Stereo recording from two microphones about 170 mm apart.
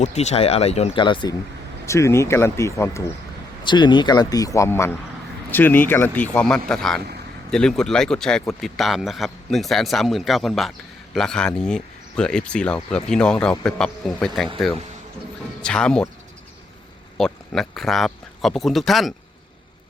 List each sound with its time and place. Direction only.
0.0 s speech: 40° left (ahead or behind)
1.0 s speech: 25° left (ahead or behind)
1.9 s speech: 15° left (ahead or behind)
3.6 s speech: 25° left (ahead or behind); by 14.5 s 5° left (ahead or behind)
15.6 s speech: 5° left (ahead or behind)
17.2 s speech: 5° left (ahead or behind)